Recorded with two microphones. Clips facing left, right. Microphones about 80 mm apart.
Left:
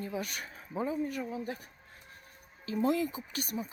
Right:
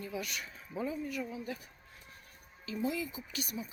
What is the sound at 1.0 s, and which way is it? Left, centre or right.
Speech, left.